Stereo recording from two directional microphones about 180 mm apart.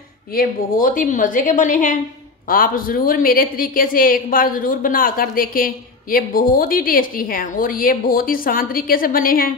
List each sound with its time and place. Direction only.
0.3 s a woman's voice: 50° left (ahead or behind)